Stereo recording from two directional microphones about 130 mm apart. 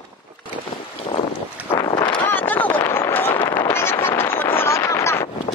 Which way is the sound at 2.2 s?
15° left (ahead or behind).